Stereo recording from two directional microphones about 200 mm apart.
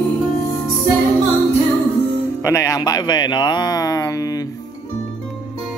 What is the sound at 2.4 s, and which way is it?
Speech, 15° left (ahead or behind).